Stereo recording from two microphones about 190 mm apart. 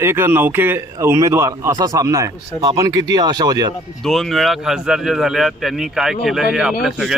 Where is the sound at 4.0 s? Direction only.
Centre (ahead or behind).